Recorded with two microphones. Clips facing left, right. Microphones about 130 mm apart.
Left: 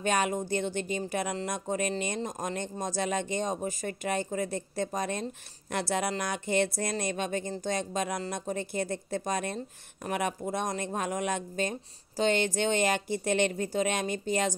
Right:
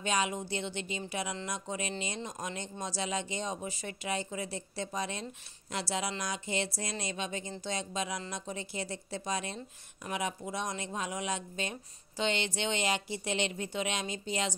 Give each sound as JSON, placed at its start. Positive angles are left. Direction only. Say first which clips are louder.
{"t": 0.0, "sound": "speech", "louder": "left 4 dB", "side_deg": 50}